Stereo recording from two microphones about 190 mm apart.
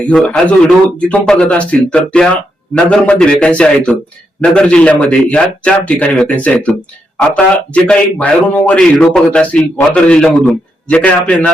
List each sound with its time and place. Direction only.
0.0 s a man's voice: 5° left (ahead or behind)